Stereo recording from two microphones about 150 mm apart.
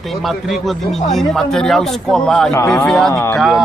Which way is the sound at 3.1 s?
20° left (ahead or behind).